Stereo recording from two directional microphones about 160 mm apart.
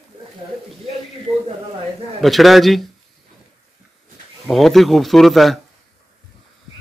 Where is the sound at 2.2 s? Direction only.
Centre (ahead or behind).